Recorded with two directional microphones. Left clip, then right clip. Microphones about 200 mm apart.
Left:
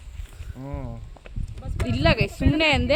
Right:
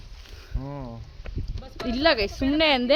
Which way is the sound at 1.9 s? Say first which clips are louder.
Right 1 dB; 10° right (ahead or behind).